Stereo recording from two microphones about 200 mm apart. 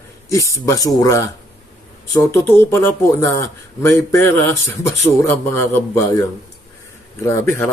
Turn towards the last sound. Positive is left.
turn(degrees=10)  # may be behind; listen again after turning